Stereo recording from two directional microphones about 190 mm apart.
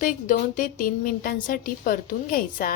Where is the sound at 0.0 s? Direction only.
45° left (ahead or behind).